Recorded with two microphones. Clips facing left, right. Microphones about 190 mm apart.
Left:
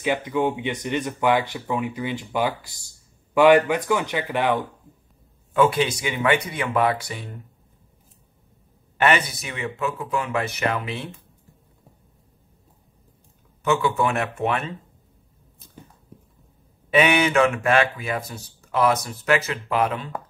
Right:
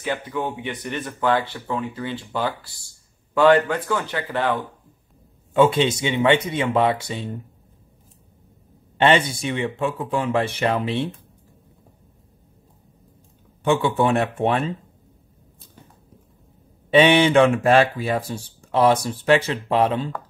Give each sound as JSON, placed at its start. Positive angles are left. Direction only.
{"t": 0.0, "sound": "speech", "side_deg": 15}
{"t": 5.5, "sound": "speech", "side_deg": -25}
{"t": 8.9, "sound": "speech", "side_deg": -25}
{"t": 13.7, "sound": "speech", "side_deg": -30}
{"t": 16.9, "sound": "speech", "side_deg": -30}